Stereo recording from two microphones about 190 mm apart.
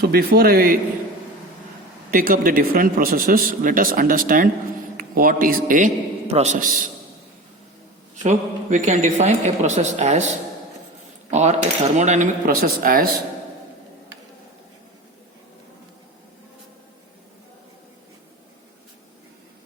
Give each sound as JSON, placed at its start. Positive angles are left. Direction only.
{"t": 0.0, "sound": "a man's voice", "side_deg": -55}
{"t": 2.0, "sound": "a man's voice", "side_deg": -45}
{"t": 8.1, "sound": "a man's voice", "side_deg": -40}
{"t": 11.3, "sound": "a man's voice", "side_deg": -35}